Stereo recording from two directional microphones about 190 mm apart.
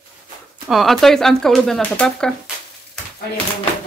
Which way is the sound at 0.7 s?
Centre (ahead or behind).